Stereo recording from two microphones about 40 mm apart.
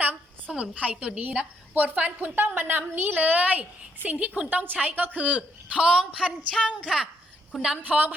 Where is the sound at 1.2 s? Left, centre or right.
Right.